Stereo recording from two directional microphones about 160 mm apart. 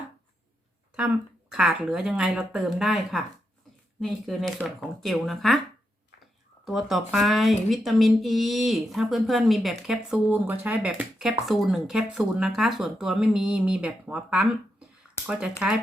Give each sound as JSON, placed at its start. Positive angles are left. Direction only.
{"t": 1.5, "sound": "speech", "side_deg": -5}
{"t": 6.7, "sound": "speech", "side_deg": 0}